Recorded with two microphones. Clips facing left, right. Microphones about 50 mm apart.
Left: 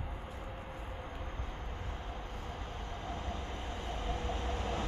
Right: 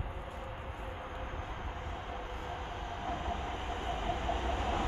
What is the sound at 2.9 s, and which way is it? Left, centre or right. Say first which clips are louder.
Train: right 5 dB; right.